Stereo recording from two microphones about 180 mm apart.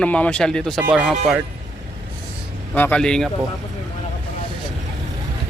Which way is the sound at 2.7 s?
10° left (ahead or behind).